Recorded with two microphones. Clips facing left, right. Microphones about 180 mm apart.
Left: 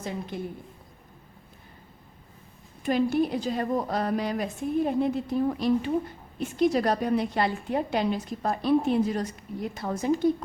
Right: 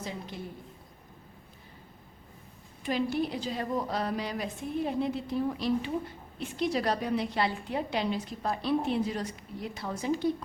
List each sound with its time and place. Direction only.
0.0 s a woman's voice: 55° left (ahead or behind)
2.8 s a woman's voice: 50° left (ahead or behind)